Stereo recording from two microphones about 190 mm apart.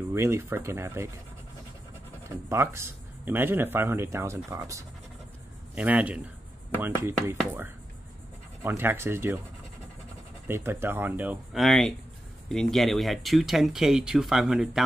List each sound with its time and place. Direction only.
0.1 s speech: 15° right (ahead or behind)
2.5 s speech: 15° right (ahead or behind)
8.6 s speech: 10° right (ahead or behind)
10.5 s speech: 10° right (ahead or behind)